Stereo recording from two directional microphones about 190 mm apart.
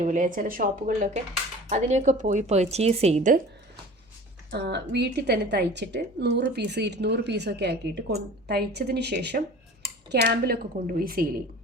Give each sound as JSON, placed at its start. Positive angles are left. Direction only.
{"t": 0.0, "sound": "speech", "side_deg": -40}
{"t": 4.5, "sound": "a woman's voice", "side_deg": -60}